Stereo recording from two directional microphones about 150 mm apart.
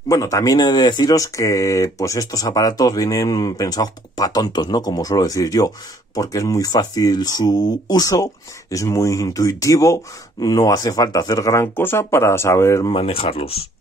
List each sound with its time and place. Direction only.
0.1 s speech: 20° left (ahead or behind)
12.9 s speech: 40° left (ahead or behind)